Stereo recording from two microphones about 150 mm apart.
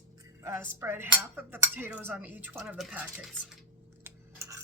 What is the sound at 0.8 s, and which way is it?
Dishes, 15° right (ahead or behind).